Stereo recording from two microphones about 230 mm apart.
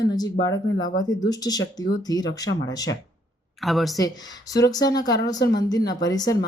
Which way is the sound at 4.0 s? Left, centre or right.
Centre.